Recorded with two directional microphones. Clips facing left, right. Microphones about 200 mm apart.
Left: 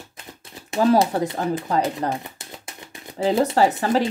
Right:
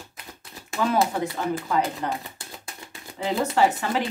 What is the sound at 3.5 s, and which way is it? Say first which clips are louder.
Speech: left 3 dB; 40° left (ahead or behind).